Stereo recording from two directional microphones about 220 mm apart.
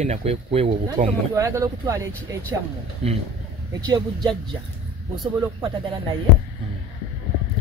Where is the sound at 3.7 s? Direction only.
20° right (ahead or behind).